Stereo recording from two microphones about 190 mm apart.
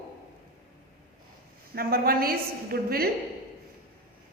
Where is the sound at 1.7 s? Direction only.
50° right (ahead or behind).